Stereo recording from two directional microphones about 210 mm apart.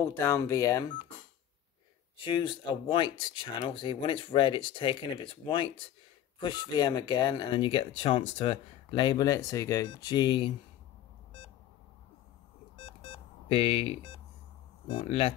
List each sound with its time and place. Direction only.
0.0 s speech: 10° left (ahead or behind)
2.1 s speech: 25° left (ahead or behind)
12.7 s alarm clock: 25° left (ahead or behind)
14.9 s speech: 25° left (ahead or behind)